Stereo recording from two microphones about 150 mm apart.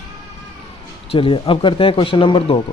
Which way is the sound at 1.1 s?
35° left (ahead or behind).